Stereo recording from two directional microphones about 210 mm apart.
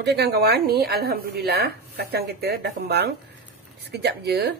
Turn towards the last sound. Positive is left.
turn(degrees=-50)  # may be behind; listen again after turning